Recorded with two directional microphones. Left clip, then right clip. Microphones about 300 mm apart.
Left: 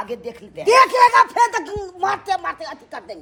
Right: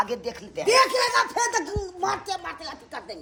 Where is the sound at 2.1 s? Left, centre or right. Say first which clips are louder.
Left 7 dB; centre.